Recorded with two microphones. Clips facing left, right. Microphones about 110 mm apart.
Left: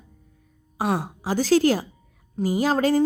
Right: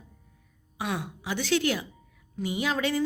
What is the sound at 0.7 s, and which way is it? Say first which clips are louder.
A woman's voice: left 7 dB; 40° left (ahead or behind).